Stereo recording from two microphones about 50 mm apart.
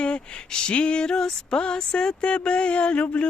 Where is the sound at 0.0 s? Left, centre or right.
Left.